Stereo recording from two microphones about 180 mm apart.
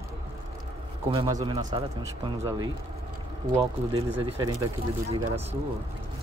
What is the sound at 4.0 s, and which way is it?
Speech, 35° right (ahead or behind).